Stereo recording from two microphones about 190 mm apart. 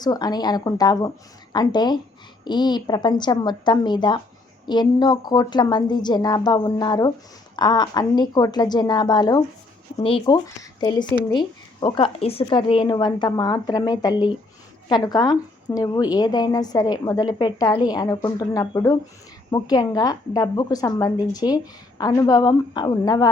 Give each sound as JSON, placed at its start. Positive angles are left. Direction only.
{"t": 0.0, "sound": "speech", "side_deg": 20}